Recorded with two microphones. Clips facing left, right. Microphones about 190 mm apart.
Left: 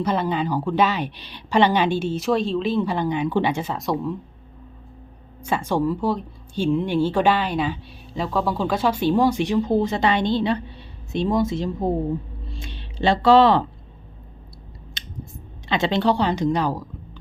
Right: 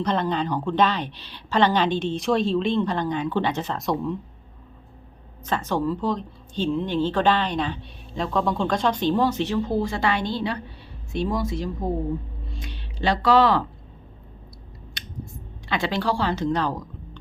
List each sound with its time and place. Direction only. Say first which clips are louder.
0.0 s speech: left 1 dB; 5° left (ahead or behind)
5.5 s a woman's voice: left 2 dB; 10° left (ahead or behind); by 13.7 s 25° left (ahead or behind)
15.0 s scissors: right 1 dB; 25° left (ahead or behind)
15.7 s a woman's voice: left 4 dB; 20° left (ahead or behind)